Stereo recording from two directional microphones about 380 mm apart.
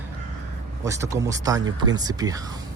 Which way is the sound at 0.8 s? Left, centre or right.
Centre.